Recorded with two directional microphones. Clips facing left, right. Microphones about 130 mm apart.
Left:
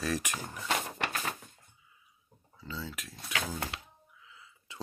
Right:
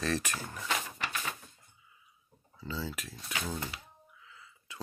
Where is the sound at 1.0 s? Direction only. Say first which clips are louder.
Left 3 dB; 50° left (ahead or behind).